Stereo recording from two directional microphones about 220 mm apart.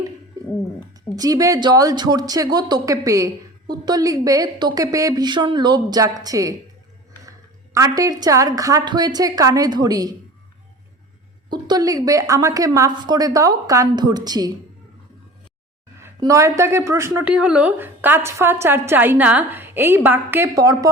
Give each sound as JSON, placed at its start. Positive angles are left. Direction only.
{"t": 0.4, "sound": "a sound", "side_deg": -15}
{"t": 1.1, "sound": "speech", "side_deg": -15}
{"t": 11.4, "sound": "speech", "side_deg": -20}
{"t": 16.0, "sound": "speech", "side_deg": -15}